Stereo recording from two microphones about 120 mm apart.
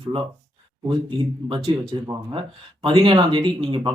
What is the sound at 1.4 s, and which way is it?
Speech, 45° right (ahead or behind).